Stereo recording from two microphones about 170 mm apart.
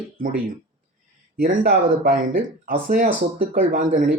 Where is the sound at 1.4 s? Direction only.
60° right (ahead or behind).